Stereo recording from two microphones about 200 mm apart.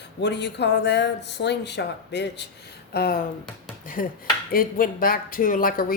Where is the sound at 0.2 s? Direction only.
60° left (ahead or behind).